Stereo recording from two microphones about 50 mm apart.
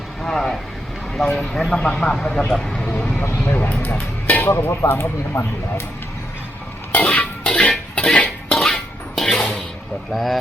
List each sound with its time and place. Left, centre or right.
0.2 s speech: centre
1.6 s speech: left
2.4 s vehicle: centre
3.4 s speech: left
4.4 s speech: left
6.9 s music: left
7.5 s music: left
8.5 s dishes: centre
10.1 s speech: centre